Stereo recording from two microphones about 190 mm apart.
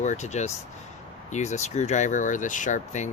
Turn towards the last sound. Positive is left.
turn(degrees=40)  # may be behind; listen again after turning